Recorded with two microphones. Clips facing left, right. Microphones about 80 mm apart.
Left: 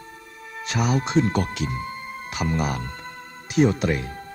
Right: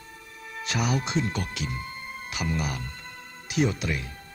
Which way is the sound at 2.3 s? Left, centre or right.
Left.